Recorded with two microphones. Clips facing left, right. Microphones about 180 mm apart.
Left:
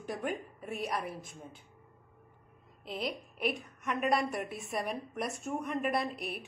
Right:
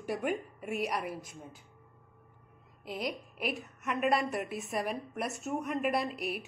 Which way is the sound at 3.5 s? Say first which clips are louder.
Right 1 dB; centre (ahead or behind).